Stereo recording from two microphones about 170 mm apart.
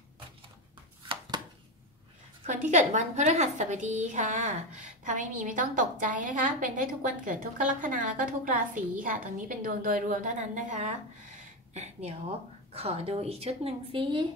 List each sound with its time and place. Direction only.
2.4 s a woman's voice: 45° right (ahead or behind)